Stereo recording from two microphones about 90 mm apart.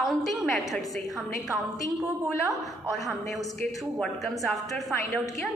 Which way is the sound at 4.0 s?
5° left (ahead or behind).